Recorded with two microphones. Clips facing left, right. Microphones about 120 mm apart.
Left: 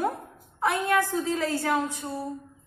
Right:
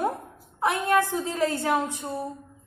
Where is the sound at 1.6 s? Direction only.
20° right (ahead or behind).